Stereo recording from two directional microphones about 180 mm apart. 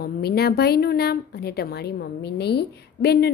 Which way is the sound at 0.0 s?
60° left (ahead or behind).